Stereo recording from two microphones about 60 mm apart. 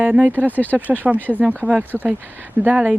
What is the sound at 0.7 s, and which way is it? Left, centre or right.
A woman's voice, right.